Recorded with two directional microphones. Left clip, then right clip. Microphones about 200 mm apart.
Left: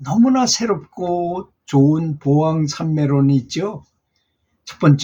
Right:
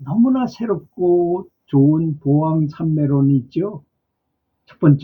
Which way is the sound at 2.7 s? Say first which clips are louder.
Even; 15° left (ahead or behind).